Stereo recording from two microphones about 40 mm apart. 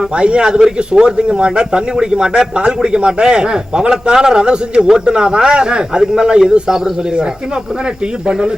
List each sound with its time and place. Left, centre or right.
0.2 s speech: right